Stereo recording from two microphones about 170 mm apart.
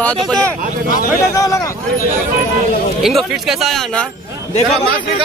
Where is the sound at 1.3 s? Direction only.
20° left (ahead or behind).